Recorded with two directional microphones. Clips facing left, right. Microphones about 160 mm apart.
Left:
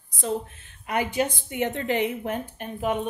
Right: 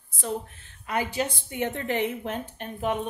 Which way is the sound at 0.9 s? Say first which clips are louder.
Left 3 dB; 15° left (ahead or behind).